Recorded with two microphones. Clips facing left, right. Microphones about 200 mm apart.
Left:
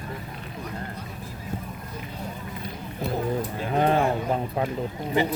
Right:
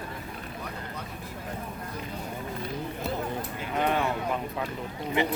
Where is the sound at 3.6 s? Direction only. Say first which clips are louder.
Left 5 dB; 35° left (ahead or behind).